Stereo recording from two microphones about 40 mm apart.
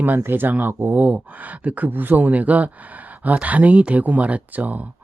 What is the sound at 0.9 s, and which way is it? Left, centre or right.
Speech, right.